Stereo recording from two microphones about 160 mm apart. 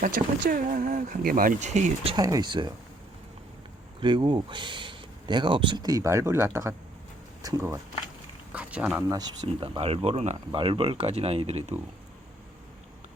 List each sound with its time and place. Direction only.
0.0 s speech: 65° right (ahead or behind); by 2.1 s 45° right (ahead or behind)
2.1 s speech: 25° right (ahead or behind)
4.0 s speech: 30° right (ahead or behind)
8.5 s speech: 5° right (ahead or behind)
9.6 s speech: 35° right (ahead or behind)